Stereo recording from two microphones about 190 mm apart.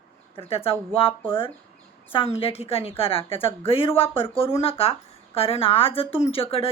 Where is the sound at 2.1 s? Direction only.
30° left (ahead or behind).